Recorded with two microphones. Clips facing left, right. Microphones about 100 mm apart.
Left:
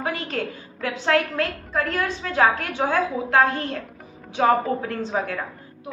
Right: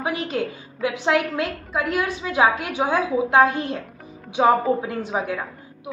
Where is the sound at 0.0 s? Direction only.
15° right (ahead or behind).